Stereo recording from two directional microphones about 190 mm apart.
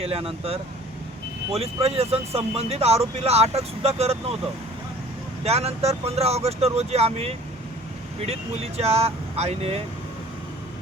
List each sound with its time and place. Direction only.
0.0 s speech: 30° right (ahead or behind)
5.5 s speech: 35° right (ahead or behind)